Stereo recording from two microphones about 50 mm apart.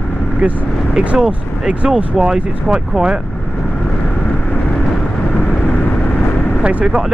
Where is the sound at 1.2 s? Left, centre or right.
Centre.